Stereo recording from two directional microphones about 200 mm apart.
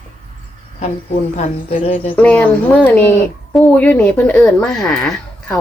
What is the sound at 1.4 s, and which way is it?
Speech, 40° left (ahead or behind).